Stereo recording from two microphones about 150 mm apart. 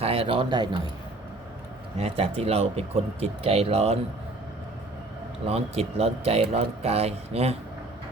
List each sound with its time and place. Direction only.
0.0 s speech: 35° right (ahead or behind)
2.0 s speech: 40° right (ahead or behind)
5.5 s a man's voice: 40° right (ahead or behind)